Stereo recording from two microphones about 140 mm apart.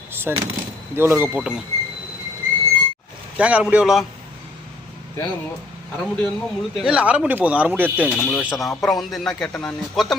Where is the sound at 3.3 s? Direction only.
10° right (ahead or behind).